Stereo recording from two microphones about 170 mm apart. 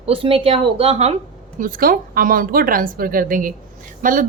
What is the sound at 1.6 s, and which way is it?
A woman's voice, 55° right (ahead or behind).